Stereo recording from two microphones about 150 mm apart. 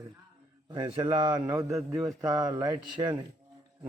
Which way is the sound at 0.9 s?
35° right (ahead or behind).